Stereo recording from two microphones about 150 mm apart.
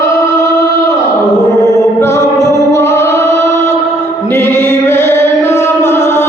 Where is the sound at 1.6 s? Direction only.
15° left (ahead or behind).